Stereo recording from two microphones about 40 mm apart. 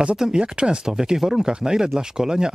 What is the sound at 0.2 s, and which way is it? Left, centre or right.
Speech, right.